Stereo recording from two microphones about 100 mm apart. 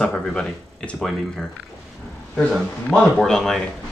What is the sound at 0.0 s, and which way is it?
Speech, 5° left (ahead or behind).